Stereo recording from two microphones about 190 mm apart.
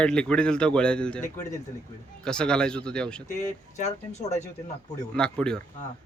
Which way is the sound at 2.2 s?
5° left (ahead or behind).